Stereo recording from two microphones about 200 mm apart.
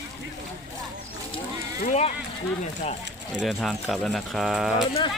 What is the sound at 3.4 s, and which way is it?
Speech, centre (ahead or behind).